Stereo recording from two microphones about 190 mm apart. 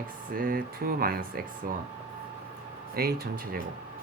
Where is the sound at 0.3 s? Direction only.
50° right (ahead or behind).